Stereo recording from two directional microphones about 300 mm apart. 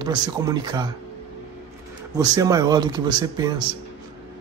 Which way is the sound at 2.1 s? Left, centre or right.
Centre.